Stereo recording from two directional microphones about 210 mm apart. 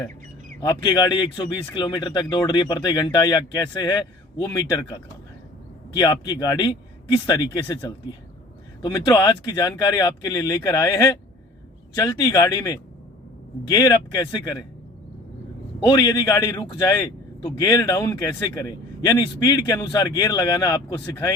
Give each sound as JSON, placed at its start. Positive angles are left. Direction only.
{"t": 0.6, "sound": "a man's voice", "side_deg": 20}
{"t": 16.0, "sound": "a man's voice", "side_deg": 20}